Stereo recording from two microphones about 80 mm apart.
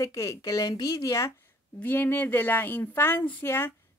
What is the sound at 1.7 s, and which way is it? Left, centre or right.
Speech, left.